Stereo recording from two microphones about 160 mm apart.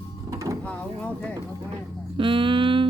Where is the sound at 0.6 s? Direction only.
10° left (ahead or behind).